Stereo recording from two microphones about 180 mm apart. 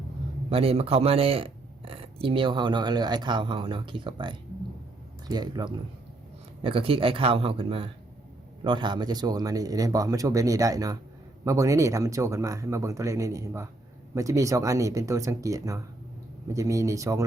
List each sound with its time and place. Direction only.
0.5 s speech: 35° right (ahead or behind); by 17.2 s 15° right (ahead or behind)